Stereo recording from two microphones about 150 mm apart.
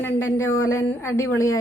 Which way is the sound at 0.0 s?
15° left (ahead or behind).